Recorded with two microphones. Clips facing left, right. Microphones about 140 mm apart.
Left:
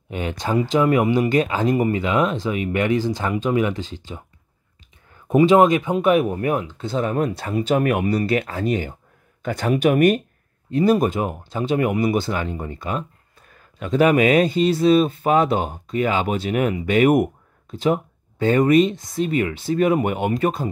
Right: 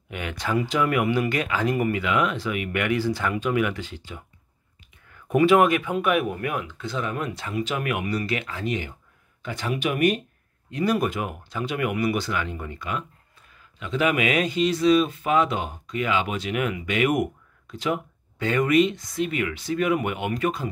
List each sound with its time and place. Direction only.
0.1 s speech: 30° left (ahead or behind); by 10.2 s 45° left (ahead or behind)
10.7 s speech: 30° left (ahead or behind)
13.5 s speech: 45° left (ahead or behind); by 18.0 s 25° left (ahead or behind)
18.4 s speech: 40° left (ahead or behind)
18.9 s speech: 25° left (ahead or behind)
19.2 s speech: 35° left (ahead or behind)